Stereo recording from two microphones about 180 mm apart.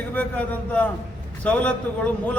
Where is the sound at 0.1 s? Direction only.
10° left (ahead or behind).